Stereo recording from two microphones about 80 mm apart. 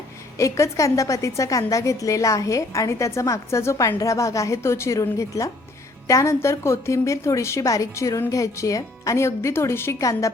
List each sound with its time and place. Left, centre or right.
0.3 s a woman's voice: left